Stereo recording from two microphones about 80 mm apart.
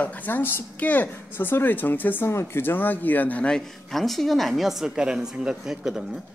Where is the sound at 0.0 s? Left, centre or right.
Left.